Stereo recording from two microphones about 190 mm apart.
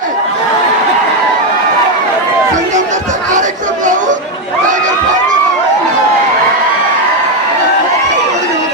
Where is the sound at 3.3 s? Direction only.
40° right (ahead or behind).